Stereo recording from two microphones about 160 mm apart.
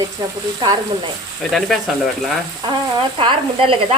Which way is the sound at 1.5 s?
Centre (ahead or behind).